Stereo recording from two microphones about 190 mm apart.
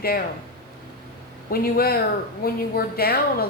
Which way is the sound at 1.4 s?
50° left (ahead or behind).